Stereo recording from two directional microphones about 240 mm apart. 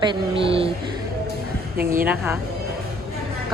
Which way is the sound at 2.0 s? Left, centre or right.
Centre.